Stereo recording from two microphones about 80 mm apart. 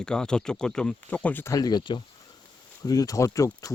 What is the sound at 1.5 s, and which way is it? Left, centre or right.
Speech, left.